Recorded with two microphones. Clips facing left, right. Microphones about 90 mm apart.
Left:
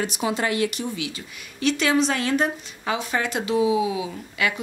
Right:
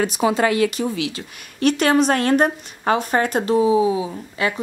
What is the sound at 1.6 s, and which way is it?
A woman's voice, 50° right (ahead or behind).